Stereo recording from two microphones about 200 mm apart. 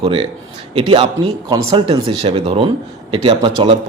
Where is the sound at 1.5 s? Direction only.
25° right (ahead or behind).